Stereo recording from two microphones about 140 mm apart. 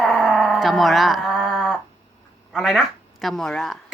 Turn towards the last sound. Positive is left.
turn(degrees=0)  # may be behind; listen again after turning